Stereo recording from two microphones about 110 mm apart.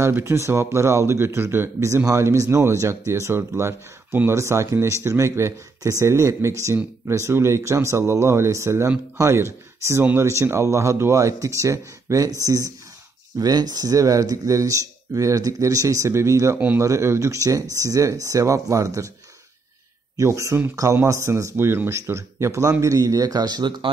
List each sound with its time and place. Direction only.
0.0 s speech: 25° right (ahead or behind)
16.5 s speech: 15° right (ahead or behind)
16.8 s speech: 25° right (ahead or behind)
20.2 s speech: 30° right (ahead or behind)